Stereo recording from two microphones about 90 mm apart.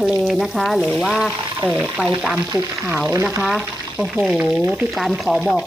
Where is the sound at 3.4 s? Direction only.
5° right (ahead or behind).